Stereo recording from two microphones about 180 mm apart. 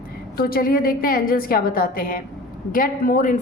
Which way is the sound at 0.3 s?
55° left (ahead or behind).